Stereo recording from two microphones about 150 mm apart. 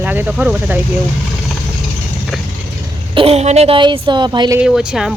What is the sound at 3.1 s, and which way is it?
Speech, 40° right (ahead or behind).